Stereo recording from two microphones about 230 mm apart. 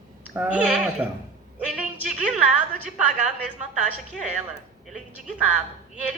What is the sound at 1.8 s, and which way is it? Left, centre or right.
A woman's voice, left.